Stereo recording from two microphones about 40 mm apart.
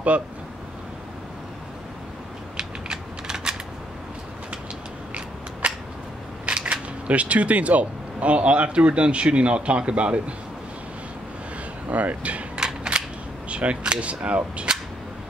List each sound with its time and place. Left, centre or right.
0.1 s speech: right
2.5 s mechanisms: centre
5.6 s a sound: right
6.4 s speech: right
11.9 s speech: right
12.5 s cap gun: right
13.5 s speech: right